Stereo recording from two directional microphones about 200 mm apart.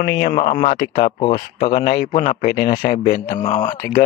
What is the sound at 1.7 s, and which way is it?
A man's voice, 50° left (ahead or behind).